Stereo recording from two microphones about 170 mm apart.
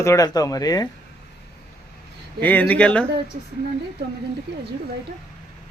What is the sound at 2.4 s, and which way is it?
Speech, 10° left (ahead or behind).